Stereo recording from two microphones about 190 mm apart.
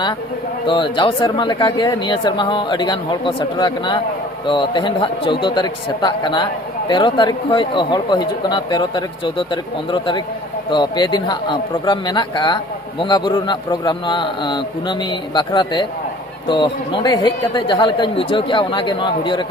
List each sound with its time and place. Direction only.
0.7 s a man's voice: 25° left (ahead or behind)